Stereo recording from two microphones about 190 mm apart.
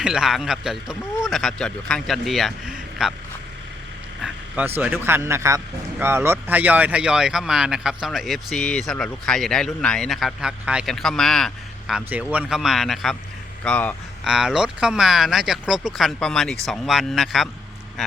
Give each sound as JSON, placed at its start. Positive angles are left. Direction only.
{"t": 0.0, "sound": "a man's voice", "side_deg": -5}
{"t": 4.2, "sound": "vehicle", "side_deg": -5}
{"t": 4.8, "sound": "a man's voice", "side_deg": -10}
{"t": 14.3, "sound": "a man's voice", "side_deg": -5}